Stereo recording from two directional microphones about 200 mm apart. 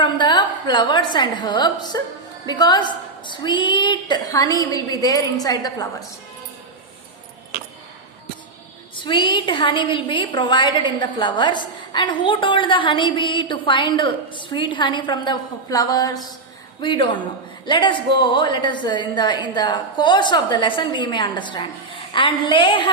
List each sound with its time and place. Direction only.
0.0 s a woman's voice: 20° left (ahead or behind)
9.0 s a woman's voice: 25° left (ahead or behind)